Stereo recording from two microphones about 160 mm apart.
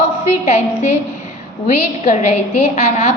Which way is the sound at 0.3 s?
45° left (ahead or behind).